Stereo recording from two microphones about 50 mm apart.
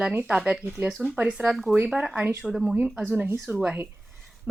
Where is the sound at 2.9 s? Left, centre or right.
Right.